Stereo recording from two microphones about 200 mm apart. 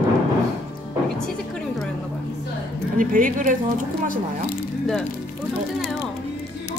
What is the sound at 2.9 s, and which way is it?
Speech, 45° right (ahead or behind).